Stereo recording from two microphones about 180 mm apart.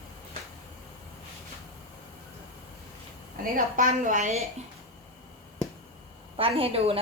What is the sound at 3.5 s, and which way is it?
Speech, 45° right (ahead or behind).